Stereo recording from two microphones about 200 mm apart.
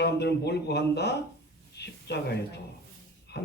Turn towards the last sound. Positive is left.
turn(degrees=55)  # may be behind; listen again after turning